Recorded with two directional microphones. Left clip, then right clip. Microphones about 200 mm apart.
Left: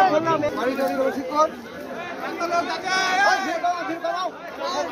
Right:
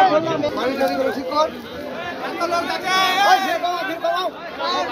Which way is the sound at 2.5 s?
50° right (ahead or behind).